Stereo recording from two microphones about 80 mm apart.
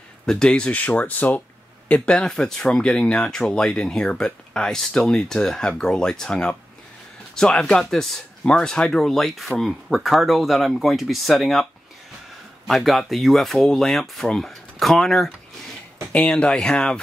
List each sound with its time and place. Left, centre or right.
0.3 s speech: centre
12.6 s speech: centre